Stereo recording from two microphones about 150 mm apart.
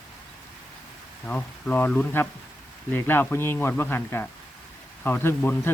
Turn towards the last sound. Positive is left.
turn(degrees=15)  # may be behind; listen again after turning